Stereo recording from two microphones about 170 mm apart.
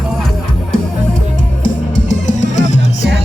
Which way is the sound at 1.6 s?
45° left (ahead or behind).